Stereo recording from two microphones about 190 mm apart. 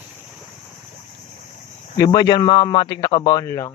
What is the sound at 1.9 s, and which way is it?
A man's voice, 20° left (ahead or behind).